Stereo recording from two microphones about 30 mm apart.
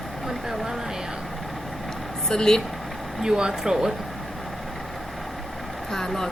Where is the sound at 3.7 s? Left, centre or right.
Centre.